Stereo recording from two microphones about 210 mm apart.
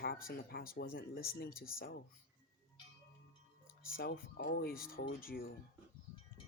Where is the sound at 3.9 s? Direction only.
45° left (ahead or behind).